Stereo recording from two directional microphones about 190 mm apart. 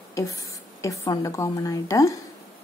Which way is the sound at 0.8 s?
20° left (ahead or behind).